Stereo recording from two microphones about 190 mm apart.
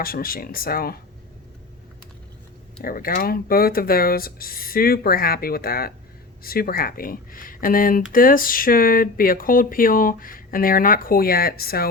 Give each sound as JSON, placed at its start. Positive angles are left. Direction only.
{"t": 0.0, "sound": "speech", "side_deg": 50}
{"t": 2.8, "sound": "speech", "side_deg": 50}